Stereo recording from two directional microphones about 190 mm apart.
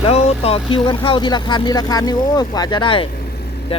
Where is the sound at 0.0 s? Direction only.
30° left (ahead or behind).